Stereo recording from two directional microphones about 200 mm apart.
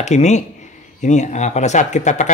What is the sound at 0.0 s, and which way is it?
Speech, 35° left (ahead or behind).